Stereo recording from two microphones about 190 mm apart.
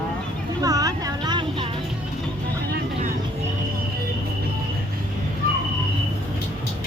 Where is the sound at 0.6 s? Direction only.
20° right (ahead or behind).